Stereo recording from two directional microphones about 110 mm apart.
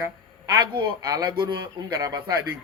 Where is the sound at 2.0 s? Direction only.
35° right (ahead or behind).